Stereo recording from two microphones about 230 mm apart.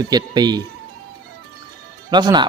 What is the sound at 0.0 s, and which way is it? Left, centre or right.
Speech, centre.